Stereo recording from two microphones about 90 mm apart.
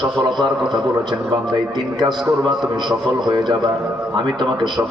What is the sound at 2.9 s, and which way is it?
A man's voice, 55° right (ahead or behind).